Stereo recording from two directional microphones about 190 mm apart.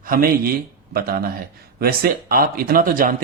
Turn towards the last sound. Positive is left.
turn(degrees=-50)  # may be behind; listen again after turning